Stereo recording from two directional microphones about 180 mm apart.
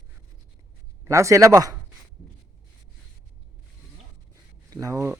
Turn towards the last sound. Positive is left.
turn(degrees=-15)  # may be behind; listen again after turning